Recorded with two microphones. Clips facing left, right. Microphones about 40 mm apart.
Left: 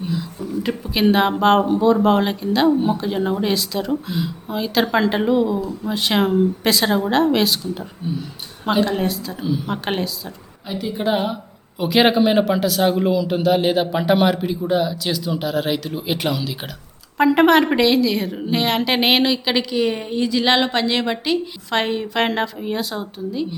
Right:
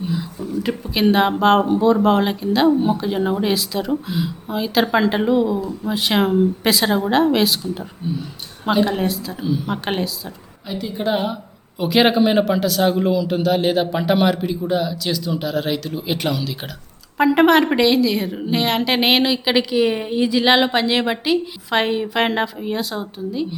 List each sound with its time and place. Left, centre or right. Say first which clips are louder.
0.6 s a woman's voice: even; centre